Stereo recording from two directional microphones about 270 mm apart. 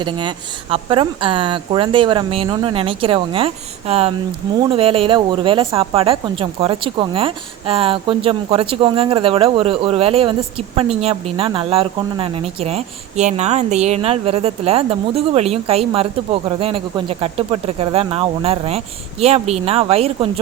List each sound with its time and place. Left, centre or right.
0.0 s speech: centre